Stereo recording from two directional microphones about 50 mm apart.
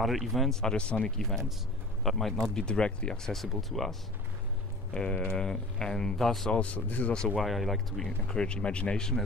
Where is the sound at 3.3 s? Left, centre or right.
Centre.